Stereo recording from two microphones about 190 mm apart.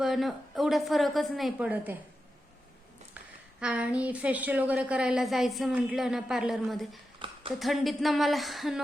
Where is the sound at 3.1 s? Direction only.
5° right (ahead or behind).